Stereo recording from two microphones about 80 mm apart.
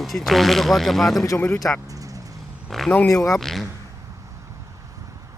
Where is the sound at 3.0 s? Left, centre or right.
Left.